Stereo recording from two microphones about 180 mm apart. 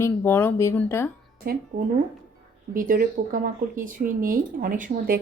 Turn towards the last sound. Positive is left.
turn(degrees=-50)  # may be behind; listen again after turning